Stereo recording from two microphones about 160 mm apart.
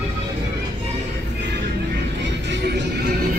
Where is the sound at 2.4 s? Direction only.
90° right.